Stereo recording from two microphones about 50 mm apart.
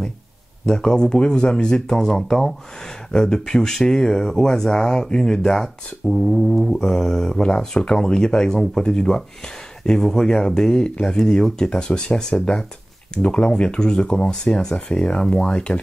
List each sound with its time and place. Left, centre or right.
0.7 s speech: centre